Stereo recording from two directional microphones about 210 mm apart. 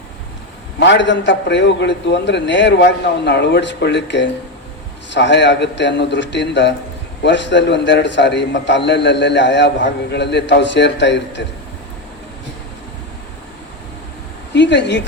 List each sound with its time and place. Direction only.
0.8 s a man's voice: 60° left (ahead or behind)
14.5 s a man's voice: 55° left (ahead or behind)